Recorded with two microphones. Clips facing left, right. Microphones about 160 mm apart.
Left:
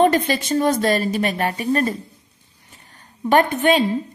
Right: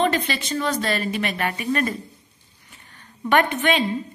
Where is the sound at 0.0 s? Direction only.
45° left (ahead or behind).